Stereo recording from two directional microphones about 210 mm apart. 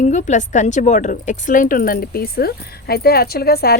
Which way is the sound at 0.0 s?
35° left (ahead or behind).